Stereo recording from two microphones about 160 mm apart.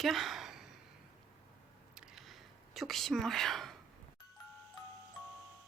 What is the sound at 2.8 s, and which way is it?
Speech, centre (ahead or behind).